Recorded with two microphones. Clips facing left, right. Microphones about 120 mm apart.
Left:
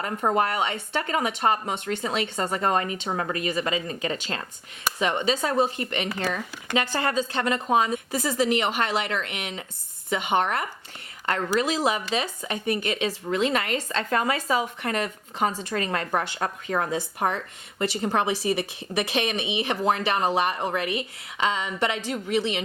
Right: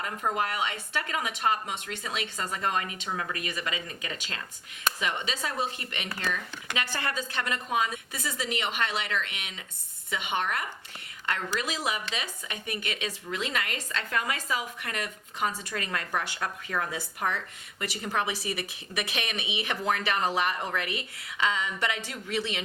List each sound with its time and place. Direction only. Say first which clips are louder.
0.0 s speech: left 6 dB; 35° left (ahead or behind)
3.3 s speech: left 8 dB; 30° left (ahead or behind)
6.7 s speech: left 8 dB; 30° left (ahead or behind)
11.6 s speech: left 7 dB; 30° left (ahead or behind)